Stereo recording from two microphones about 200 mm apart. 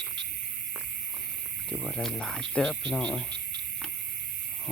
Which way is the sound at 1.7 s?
Centre (ahead or behind).